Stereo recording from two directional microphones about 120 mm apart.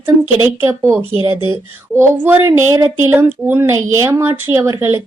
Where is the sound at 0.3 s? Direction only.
20° right (ahead or behind).